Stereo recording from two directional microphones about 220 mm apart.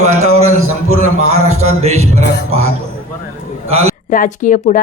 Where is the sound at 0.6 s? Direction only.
75° right (ahead or behind).